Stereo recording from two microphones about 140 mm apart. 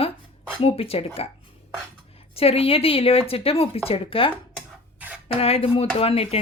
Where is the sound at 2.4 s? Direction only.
45° left (ahead or behind).